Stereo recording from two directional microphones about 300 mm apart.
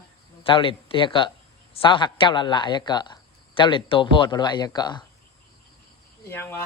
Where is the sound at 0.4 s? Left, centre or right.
Centre.